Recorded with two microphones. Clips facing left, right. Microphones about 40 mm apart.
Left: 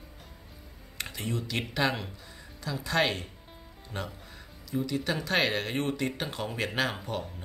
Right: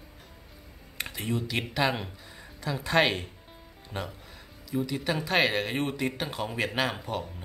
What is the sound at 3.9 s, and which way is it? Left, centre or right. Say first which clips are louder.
Speech: right 1 dB; centre.